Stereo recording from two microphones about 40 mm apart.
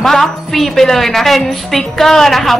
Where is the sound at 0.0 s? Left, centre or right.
Centre.